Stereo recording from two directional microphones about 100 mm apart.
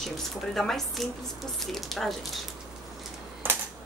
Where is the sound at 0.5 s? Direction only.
5° left (ahead or behind).